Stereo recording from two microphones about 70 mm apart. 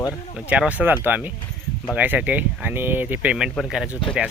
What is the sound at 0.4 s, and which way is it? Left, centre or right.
Speech, centre.